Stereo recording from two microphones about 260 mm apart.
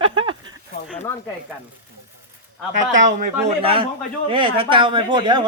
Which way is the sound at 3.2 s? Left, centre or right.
Right.